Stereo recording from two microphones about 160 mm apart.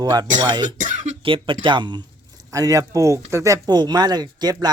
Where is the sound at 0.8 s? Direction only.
50° right (ahead or behind).